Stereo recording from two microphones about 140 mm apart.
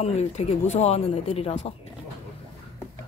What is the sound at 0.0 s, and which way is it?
Speech, 50° left (ahead or behind).